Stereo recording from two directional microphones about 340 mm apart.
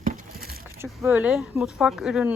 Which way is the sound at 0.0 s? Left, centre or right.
Right.